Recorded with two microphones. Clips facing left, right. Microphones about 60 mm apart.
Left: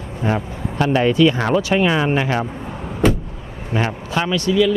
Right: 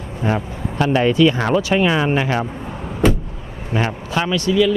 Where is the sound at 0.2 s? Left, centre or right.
Right.